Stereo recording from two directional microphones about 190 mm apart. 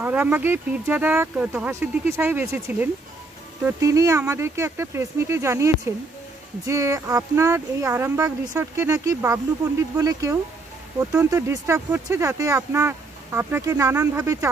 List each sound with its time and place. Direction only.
0.0 s speech: 10° right (ahead or behind)